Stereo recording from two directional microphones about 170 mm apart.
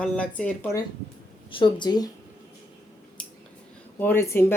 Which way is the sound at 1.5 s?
30° left (ahead or behind).